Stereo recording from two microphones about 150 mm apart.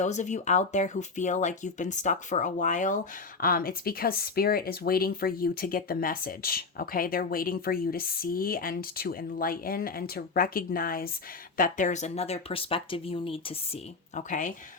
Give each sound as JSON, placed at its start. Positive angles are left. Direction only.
{"t": 0.0, "sound": "speech", "side_deg": 50}
{"t": 3.4, "sound": "speech", "side_deg": 75}
{"t": 11.5, "sound": "speech", "side_deg": 60}
{"t": 14.2, "sound": "speech", "side_deg": 55}